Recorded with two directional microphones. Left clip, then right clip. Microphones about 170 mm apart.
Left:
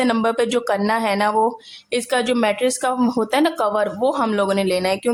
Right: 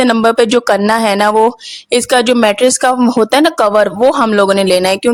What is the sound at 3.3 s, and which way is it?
Speech, 45° right (ahead or behind).